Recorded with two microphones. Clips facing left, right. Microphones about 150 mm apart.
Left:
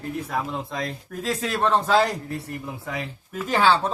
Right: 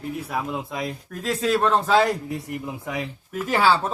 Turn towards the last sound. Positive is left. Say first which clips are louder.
# even
turn(degrees=-5)  # may be behind; listen again after turning